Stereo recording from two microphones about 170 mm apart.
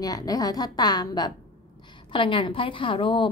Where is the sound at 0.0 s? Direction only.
20° left (ahead or behind).